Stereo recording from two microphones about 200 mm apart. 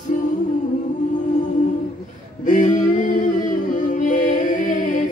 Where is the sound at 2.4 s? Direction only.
40° left (ahead or behind).